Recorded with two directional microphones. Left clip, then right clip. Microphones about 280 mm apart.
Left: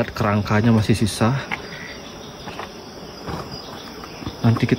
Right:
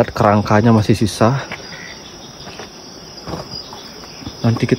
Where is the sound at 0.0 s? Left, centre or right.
Centre.